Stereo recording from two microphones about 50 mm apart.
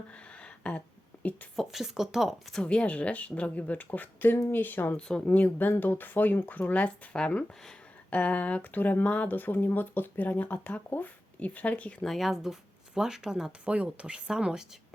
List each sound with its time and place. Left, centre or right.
0.1 s a sound: left
1.5 s speech: centre
2.6 s speech: left
4.9 s speech: centre
5.3 s speech: left
12.0 s speech: centre
12.3 s speech: centre